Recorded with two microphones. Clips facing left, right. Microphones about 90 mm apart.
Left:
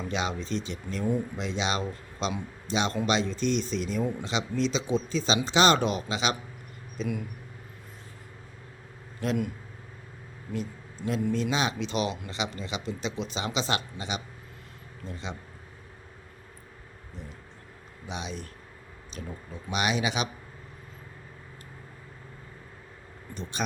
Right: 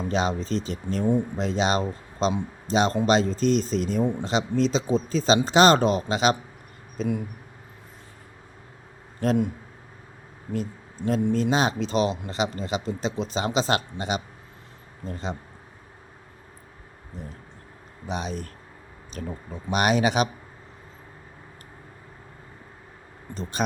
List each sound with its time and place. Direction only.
0.1 s speech: 40° right (ahead or behind)
9.2 s speech: 35° right (ahead or behind)
10.5 s speech: 40° right (ahead or behind)
18.0 s speech: 40° right (ahead or behind)
23.3 s speech: 40° right (ahead or behind)